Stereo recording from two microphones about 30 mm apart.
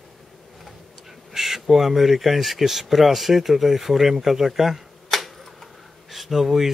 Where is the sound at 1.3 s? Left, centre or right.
Centre.